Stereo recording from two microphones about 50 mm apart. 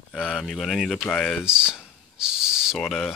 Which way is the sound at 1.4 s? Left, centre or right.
Centre.